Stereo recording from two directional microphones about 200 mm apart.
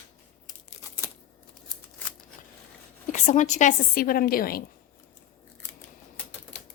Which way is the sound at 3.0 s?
40° left (ahead or behind).